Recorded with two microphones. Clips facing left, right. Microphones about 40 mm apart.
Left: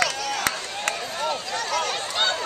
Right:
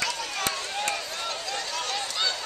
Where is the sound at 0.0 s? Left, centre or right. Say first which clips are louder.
Left 5 dB; left.